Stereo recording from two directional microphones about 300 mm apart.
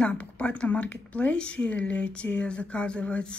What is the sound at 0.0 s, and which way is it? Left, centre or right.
A woman's voice, centre.